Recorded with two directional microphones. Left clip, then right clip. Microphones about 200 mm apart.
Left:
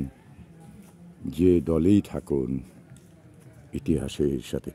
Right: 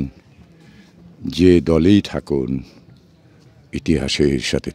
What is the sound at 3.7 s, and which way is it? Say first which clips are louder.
Speech: right 9 dB; 10° right (ahead or behind).